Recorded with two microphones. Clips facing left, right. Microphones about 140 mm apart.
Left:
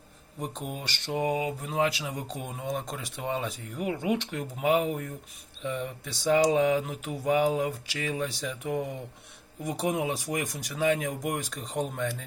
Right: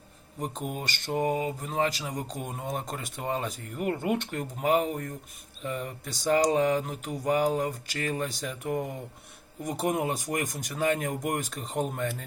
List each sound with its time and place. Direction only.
0.3 s speech: centre (ahead or behind)
0.8 s mantra: 50° right (ahead or behind)
1.1 s speech: 5° left (ahead or behind)